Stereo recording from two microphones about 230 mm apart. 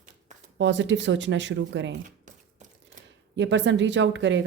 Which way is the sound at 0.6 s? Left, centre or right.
Right.